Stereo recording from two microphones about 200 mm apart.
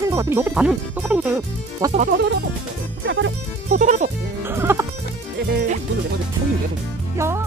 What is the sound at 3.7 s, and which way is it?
Speech, 35° right (ahead or behind).